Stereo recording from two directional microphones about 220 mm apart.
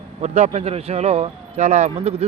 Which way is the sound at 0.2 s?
30° right (ahead or behind).